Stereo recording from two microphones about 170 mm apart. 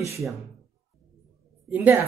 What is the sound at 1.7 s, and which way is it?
Speech, 10° right (ahead or behind).